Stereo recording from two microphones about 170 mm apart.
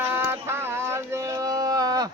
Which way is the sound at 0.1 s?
10° right (ahead or behind).